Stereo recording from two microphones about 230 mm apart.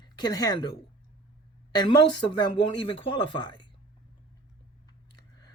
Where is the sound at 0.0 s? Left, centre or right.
Centre.